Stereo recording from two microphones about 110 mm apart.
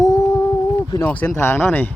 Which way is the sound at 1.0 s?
15° left (ahead or behind).